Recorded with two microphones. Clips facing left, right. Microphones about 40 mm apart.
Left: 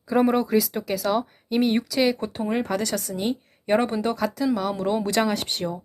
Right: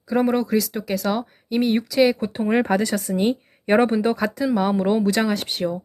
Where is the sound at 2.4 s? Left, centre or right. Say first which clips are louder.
Right 6 dB; right.